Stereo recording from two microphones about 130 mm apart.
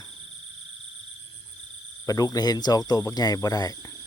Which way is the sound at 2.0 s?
30° left (ahead or behind).